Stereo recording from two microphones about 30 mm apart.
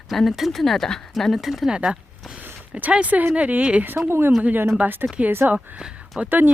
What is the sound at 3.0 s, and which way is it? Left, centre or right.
Speech, right.